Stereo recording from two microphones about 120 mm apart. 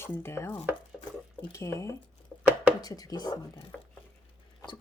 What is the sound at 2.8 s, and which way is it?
Speech, 30° left (ahead or behind).